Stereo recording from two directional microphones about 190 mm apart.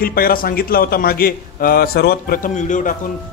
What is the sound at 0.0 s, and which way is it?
A man's voice, 50° left (ahead or behind).